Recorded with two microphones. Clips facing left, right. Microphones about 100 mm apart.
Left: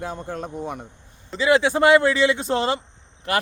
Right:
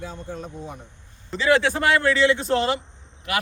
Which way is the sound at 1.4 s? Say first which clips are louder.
Left 2 dB; 15° left (ahead or behind).